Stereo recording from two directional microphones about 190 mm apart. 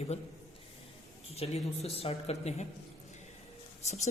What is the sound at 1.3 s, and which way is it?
Speech, 35° left (ahead or behind).